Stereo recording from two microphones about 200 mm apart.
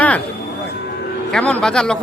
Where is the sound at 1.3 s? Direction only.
5° left (ahead or behind).